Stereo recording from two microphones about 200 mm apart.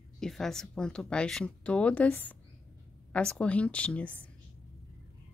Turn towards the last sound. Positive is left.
turn(degrees=5)  # may be behind; listen again after turning